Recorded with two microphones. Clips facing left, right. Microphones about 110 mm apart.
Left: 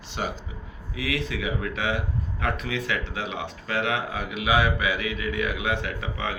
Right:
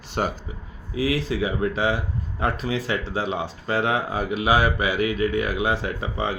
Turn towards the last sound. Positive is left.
turn(degrees=-35)  # may be behind; listen again after turning